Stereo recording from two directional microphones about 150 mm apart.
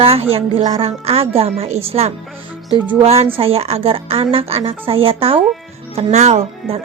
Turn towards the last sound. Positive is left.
turn(degrees=-50)  # may be behind; listen again after turning